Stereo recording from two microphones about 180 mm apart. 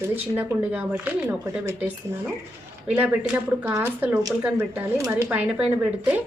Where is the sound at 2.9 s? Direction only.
10° right (ahead or behind).